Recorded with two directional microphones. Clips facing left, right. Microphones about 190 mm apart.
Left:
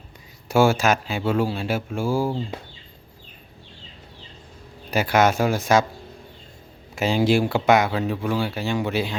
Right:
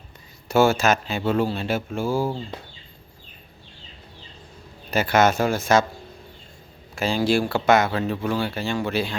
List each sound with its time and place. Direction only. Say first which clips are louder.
0.4 s speech: even; 10° left (ahead or behind)
4.9 s speech: even; 10° left (ahead or behind)
6.9 s speech: left 2 dB; 20° left (ahead or behind)